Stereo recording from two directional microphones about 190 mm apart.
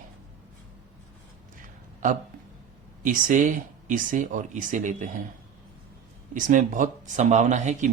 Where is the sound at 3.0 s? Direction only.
45° right (ahead or behind).